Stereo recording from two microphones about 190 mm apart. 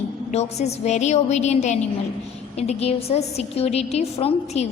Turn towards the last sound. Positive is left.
turn(degrees=35)  # may be behind; listen again after turning